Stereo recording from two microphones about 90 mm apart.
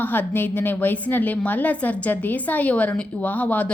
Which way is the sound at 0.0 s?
20° left (ahead or behind).